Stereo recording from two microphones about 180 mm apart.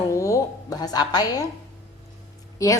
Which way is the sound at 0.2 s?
20° left (ahead or behind).